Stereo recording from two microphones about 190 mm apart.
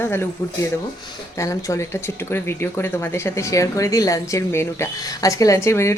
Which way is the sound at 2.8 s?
15° left (ahead or behind).